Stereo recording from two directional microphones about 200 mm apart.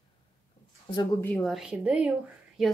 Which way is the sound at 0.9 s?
15° left (ahead or behind).